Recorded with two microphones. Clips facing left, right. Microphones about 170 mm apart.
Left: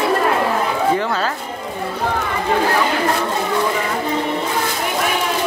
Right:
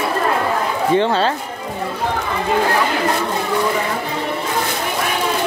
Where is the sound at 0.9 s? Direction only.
25° right (ahead or behind).